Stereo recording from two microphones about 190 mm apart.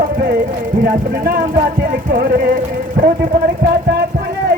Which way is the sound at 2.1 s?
45° right (ahead or behind).